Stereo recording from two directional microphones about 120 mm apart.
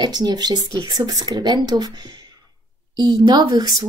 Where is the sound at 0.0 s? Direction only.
35° right (ahead or behind).